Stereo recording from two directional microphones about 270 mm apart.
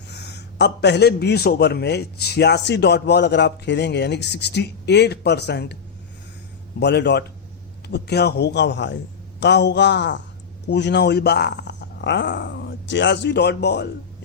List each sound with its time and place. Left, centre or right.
0.1 s a man's voice: left
6.7 s a man's voice: left